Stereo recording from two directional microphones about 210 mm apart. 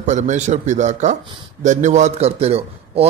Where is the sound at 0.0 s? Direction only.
35° right (ahead or behind).